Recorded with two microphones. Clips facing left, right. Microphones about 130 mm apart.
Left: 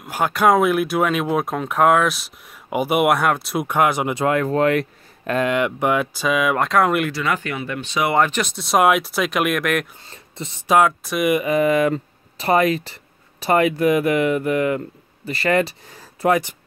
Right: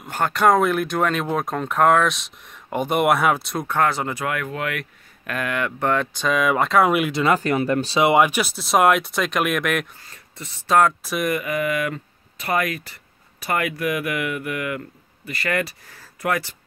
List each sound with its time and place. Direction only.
0.0 s speech: 5° left (ahead or behind)
3.5 s speech: 15° left (ahead or behind)
4.2 s speech: 30° left (ahead or behind); by 7.1 s 5° right (ahead or behind)
7.1 s speech: 25° right (ahead or behind)
7.3 s speech: 40° right (ahead or behind)
8.1 s speech: 10° right (ahead or behind)
10.0 s speech: 25° left (ahead or behind)
10.8 s speech: centre (ahead or behind)
11.4 s speech: 30° left (ahead or behind)